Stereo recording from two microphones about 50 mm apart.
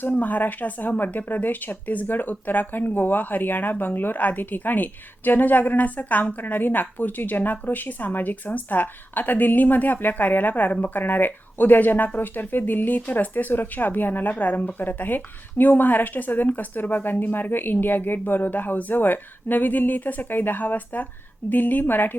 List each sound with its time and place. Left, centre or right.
0.1 s speech: left